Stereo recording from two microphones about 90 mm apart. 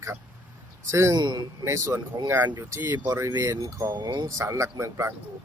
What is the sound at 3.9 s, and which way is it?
Speech, 60° right (ahead or behind).